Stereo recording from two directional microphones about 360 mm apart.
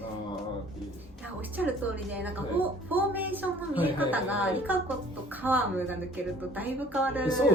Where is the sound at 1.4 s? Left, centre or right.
Centre.